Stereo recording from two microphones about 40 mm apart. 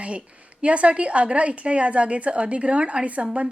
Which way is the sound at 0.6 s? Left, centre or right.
Right.